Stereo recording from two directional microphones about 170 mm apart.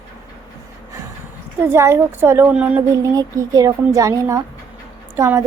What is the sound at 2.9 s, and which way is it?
A woman's voice, 20° right (ahead or behind).